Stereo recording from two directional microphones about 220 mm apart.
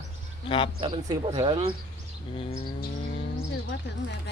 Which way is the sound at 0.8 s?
20° right (ahead or behind).